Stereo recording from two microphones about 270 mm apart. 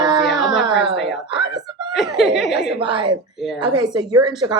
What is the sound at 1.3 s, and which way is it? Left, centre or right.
Wail, centre.